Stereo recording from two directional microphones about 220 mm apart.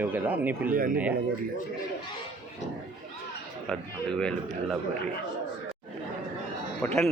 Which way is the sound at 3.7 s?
5° left (ahead or behind).